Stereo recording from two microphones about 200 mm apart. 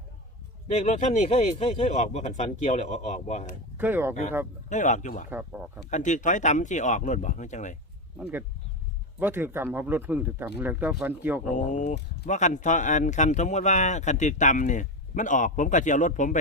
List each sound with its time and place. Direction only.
0.7 s speech: 35° left (ahead or behind)
3.8 s speech: 10° right (ahead or behind)
4.7 s speech: 40° left (ahead or behind)
5.3 s speech: 10° right (ahead or behind)
5.9 s speech: 35° left (ahead or behind)
8.2 s speech: 10° right (ahead or behind)
11.5 s speech: 40° left (ahead or behind)